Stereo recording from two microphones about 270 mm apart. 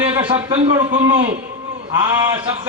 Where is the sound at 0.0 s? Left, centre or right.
Centre.